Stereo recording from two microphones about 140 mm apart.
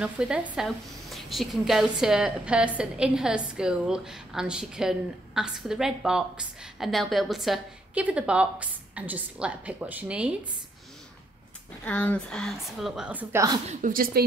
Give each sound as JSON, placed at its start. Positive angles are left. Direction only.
{"t": 0.0, "sound": "a woman's voice", "side_deg": -5}
{"t": 11.8, "sound": "a woman's voice", "side_deg": 10}
{"t": 13.7, "sound": "a woman's voice", "side_deg": -70}